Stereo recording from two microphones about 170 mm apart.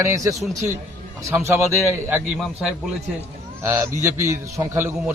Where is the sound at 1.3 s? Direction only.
15° right (ahead or behind).